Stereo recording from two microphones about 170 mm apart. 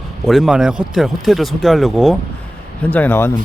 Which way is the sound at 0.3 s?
Centre (ahead or behind).